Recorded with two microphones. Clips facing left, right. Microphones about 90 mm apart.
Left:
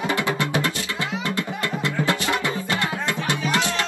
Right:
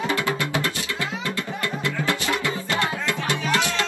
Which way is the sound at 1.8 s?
20° left (ahead or behind).